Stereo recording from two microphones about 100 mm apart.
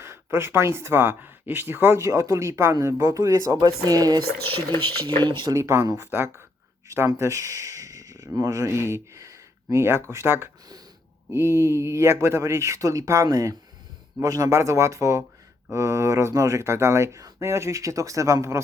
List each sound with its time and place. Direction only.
0.0 s speech: 25° right (ahead or behind)
5.5 s speech: 30° right (ahead or behind)